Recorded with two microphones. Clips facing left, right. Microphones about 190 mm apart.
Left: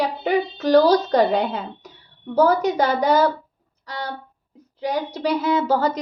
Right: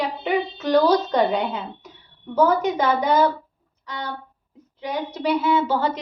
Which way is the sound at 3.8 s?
35° left (ahead or behind).